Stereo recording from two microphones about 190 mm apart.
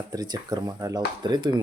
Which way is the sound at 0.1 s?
20° right (ahead or behind).